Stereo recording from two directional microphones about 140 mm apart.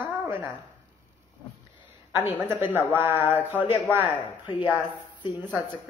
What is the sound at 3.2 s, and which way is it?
Speech, 15° left (ahead or behind).